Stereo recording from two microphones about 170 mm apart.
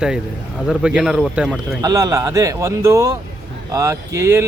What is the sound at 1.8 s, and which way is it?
Speech, 20° right (ahead or behind).